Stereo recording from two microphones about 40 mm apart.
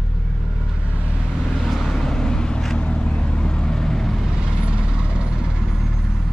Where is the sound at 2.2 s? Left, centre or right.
Left; by 4.3 s centre.